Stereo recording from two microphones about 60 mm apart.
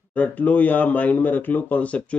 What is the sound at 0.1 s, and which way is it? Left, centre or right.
Speech, left.